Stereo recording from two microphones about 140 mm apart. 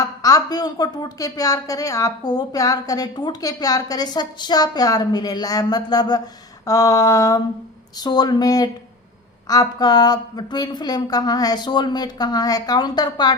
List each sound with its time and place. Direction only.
0.0 s a woman's voice: 25° left (ahead or behind)